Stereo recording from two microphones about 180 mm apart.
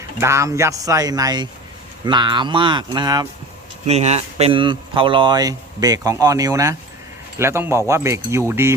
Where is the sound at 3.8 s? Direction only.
35° right (ahead or behind).